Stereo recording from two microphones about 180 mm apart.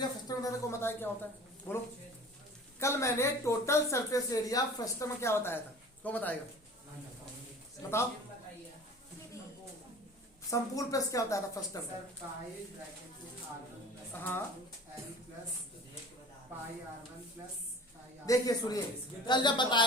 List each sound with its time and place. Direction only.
0.3 s a woman's voice: 15° left (ahead or behind)
2.8 s speech: 15° left (ahead or behind)
7.8 s a man's voice: 15° left (ahead or behind)
10.5 s speech: 20° left (ahead or behind)
14.1 s speech: 10° left (ahead or behind)
18.3 s speech: 20° left (ahead or behind)